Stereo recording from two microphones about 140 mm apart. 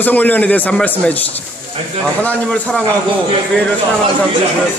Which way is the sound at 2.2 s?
5° left (ahead or behind).